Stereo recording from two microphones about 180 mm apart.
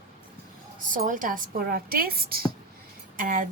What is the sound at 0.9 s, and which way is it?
Speech, 50° right (ahead or behind).